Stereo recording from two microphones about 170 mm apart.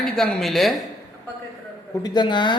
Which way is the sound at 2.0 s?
25° left (ahead or behind).